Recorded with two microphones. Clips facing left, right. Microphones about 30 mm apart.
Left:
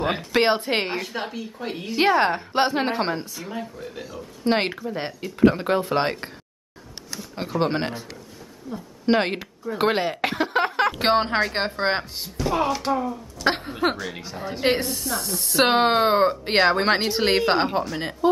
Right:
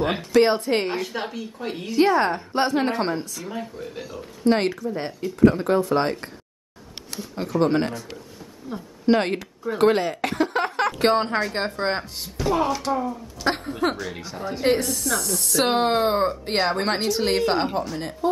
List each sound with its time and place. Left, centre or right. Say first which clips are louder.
0.0 s a woman's voice: right 1 dB; centre
0.5 s speech: even; left
0.8 s speech: right 1 dB; centre
2.0 s speech: even; left
3.9 s speech: right 1 dB; centre
4.5 s speech: right 2 dB; left
7.3 s speech: right 3 dB; left
9.0 s speech: right 1 dB; centre
12.4 s speech: right 1 dB; centre
13.9 s speech: even; centre; by 18.4 s left